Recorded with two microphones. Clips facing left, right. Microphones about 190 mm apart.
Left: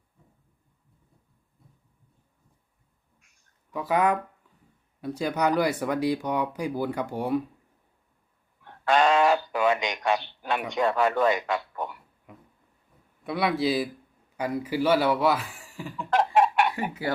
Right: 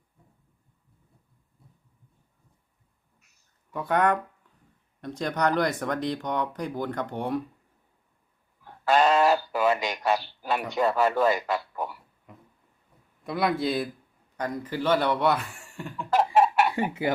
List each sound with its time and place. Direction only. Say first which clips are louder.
3.2 s a sound: left 1 dB; centre (ahead or behind)
4.9 s speech: left 1 dB; 5° left (ahead or behind)
8.6 s speech: even; 5° right (ahead or behind)
16.7 s speech: right 4 dB; 25° right (ahead or behind)